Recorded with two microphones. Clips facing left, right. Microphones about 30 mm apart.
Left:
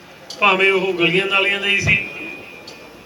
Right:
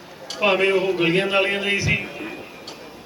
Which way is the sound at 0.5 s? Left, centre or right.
Left.